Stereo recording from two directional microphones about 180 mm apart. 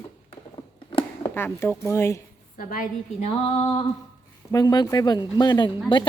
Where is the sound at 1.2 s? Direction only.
10° left (ahead or behind).